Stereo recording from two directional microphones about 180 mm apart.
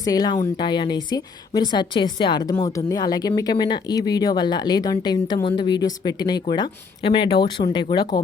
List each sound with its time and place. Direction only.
0.0 s a woman's voice: 20° left (ahead or behind)